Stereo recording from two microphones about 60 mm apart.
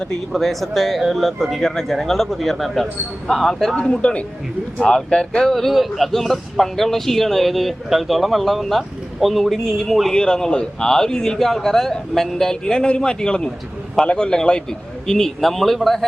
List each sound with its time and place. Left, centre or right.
0.3 s speech: centre